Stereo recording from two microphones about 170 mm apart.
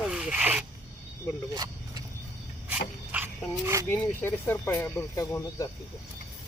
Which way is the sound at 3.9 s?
10° left (ahead or behind).